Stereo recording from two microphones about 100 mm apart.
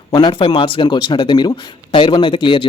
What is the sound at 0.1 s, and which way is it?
Speech, 45° left (ahead or behind).